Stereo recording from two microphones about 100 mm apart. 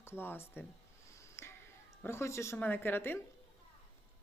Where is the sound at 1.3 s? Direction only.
25° left (ahead or behind).